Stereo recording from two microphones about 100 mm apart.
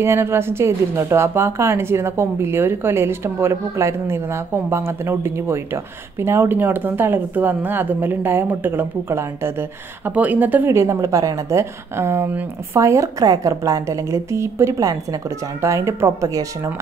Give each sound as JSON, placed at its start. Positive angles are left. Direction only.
{"t": 0.0, "sound": "speech", "side_deg": -25}
{"t": 12.8, "sound": "a woman's voice", "side_deg": -30}